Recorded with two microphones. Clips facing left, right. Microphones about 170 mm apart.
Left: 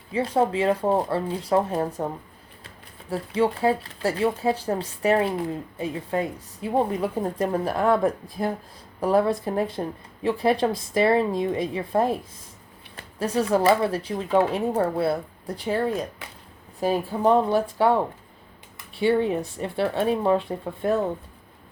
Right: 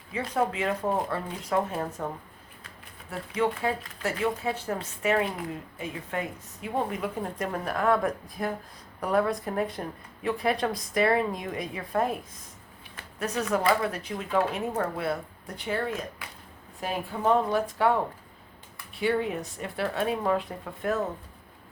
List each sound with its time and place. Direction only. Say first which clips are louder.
0.1 s speech: left 6 dB; 30° left (ahead or behind)